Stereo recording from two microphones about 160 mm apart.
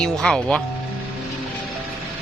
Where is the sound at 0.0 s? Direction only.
5° left (ahead or behind).